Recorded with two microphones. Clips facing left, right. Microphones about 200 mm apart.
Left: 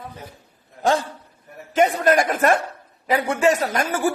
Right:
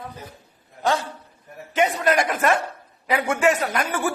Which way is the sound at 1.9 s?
45° left (ahead or behind).